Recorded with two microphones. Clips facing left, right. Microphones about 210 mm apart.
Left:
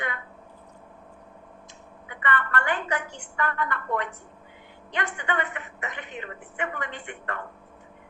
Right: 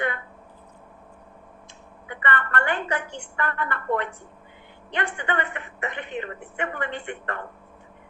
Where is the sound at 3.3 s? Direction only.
30° right (ahead or behind).